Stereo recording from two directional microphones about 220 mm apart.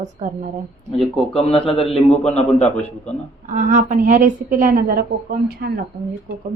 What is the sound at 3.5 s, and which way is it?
A woman's voice, 35° right (ahead or behind).